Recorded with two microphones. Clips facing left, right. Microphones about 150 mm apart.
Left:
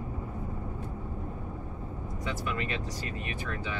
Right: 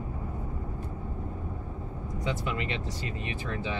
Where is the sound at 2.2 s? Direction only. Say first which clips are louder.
Right 2 dB; 25° right (ahead or behind).